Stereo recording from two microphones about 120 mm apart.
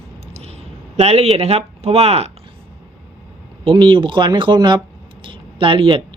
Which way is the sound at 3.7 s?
45° right (ahead or behind).